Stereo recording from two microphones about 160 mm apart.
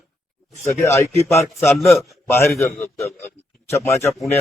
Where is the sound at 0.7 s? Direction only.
20° left (ahead or behind).